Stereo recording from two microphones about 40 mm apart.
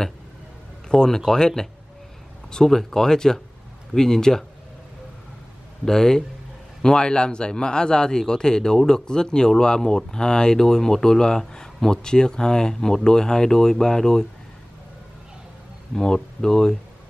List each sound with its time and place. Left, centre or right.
0.8 s speech: centre
5.9 s speech: centre
15.9 s speech: centre